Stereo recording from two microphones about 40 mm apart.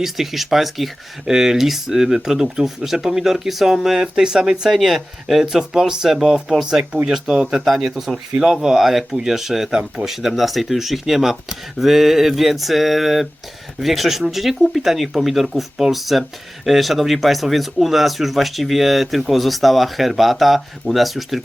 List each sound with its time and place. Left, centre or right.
0.0 s speech: centre
4.7 s speech: centre